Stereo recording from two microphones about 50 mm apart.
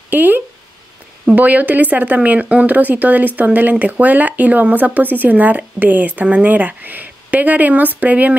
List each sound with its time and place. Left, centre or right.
0.1 s speech: right